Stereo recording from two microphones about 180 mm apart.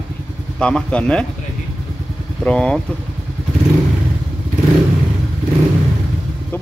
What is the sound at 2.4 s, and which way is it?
Speech, 5° left (ahead or behind).